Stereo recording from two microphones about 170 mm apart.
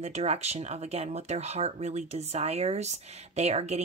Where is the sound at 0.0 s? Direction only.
40° right (ahead or behind).